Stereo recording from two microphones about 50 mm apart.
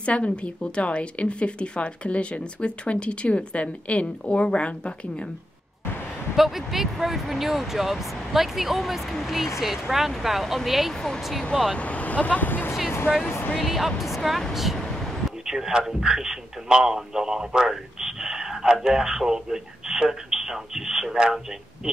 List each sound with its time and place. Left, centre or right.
0.0 s a woman's voice: left
6.3 s a man's voice: centre
11.7 s speech: left
13.1 s speech: right
13.6 s speech: centre
14.8 s vehicle: centre
15.4 s a man's voice: centre